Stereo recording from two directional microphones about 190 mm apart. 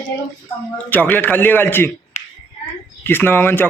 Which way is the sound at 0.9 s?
10° left (ahead or behind).